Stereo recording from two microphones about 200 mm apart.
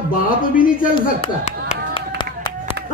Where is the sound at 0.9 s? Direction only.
30° left (ahead or behind).